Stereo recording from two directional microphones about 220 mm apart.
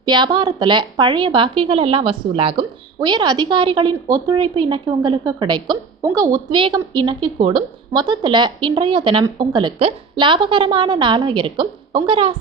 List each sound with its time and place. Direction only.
0.0 s a woman's voice: 20° right (ahead or behind)